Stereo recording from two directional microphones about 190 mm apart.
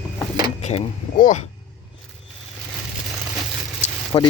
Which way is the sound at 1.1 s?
45° left (ahead or behind).